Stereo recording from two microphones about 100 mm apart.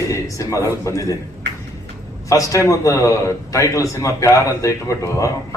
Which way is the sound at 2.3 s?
35° left (ahead or behind).